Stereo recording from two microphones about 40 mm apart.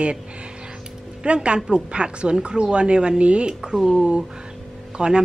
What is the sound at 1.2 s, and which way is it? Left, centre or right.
A woman's voice, right.